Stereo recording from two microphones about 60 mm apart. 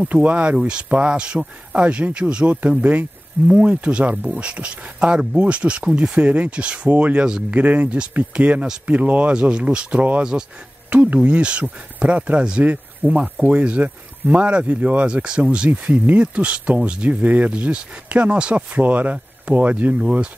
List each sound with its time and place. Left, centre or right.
0.0 s speech: right
7.5 s speech: right